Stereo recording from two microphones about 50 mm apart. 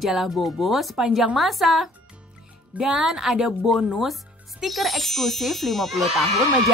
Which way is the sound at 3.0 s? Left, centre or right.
Centre.